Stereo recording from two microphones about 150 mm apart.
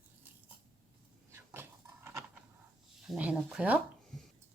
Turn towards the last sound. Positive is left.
turn(degrees=-5)  # may be behind; listen again after turning